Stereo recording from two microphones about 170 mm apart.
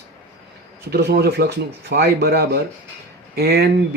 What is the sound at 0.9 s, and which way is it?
A man's voice, 70° right (ahead or behind).